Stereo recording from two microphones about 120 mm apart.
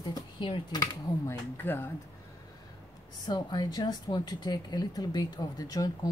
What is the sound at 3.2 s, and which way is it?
Speech, 35° left (ahead or behind).